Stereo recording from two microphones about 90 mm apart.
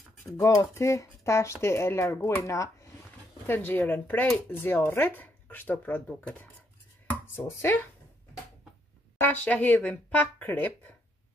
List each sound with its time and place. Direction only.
0.4 s speech: 35° left (ahead or behind)
3.4 s speech: 25° left (ahead or behind)
7.1 s a sound: 20° left (ahead or behind)
9.2 s speech: 20° left (ahead or behind)